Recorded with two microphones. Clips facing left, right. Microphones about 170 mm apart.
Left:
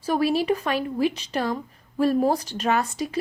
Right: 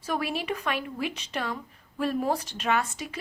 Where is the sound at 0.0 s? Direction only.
35° left (ahead or behind).